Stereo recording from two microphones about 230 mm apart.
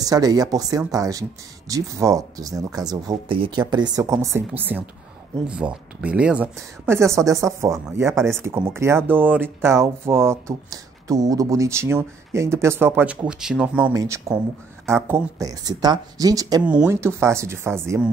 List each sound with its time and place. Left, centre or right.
0.0 s speech: centre